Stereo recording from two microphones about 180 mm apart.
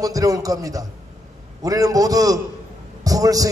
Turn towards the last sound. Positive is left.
turn(degrees=-20)  # may be behind; listen again after turning